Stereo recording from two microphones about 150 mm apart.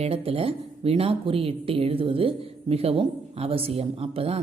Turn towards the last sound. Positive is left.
turn(degrees=-40)  # may be behind; listen again after turning